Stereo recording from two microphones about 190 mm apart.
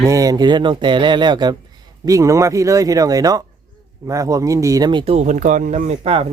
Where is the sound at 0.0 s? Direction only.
15° right (ahead or behind).